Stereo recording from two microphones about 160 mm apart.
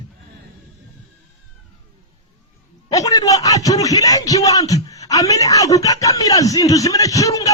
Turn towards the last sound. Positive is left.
turn(degrees=20)  # may be behind; listen again after turning